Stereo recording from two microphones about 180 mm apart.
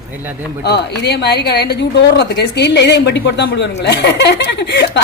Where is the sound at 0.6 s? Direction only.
65° left (ahead or behind).